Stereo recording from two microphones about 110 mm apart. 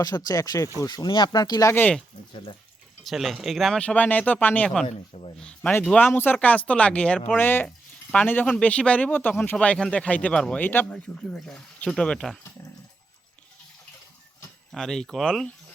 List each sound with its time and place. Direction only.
0.0 s speech: 35° left (ahead or behind)
1.7 s speech: 15° left (ahead or behind)
3.0 s speech: centre (ahead or behind)
4.9 s speech: 65° left (ahead or behind)
5.8 s speech: 5° left (ahead or behind)
6.1 s speech: 20° left (ahead or behind)
14.7 s speech: 5° left (ahead or behind)